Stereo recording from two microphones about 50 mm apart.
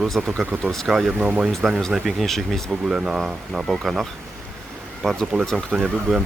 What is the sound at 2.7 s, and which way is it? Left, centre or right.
Speech, centre.